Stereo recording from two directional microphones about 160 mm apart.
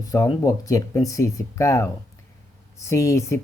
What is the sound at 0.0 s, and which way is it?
Speech, 20° left (ahead or behind).